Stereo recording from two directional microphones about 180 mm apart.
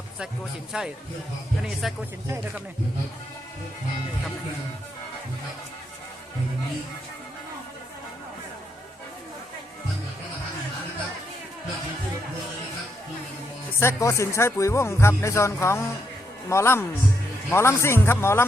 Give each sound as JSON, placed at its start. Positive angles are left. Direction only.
{"t": 0.7, "sound": "a man's voice", "side_deg": -5}
{"t": 13.7, "sound": "speech", "side_deg": 15}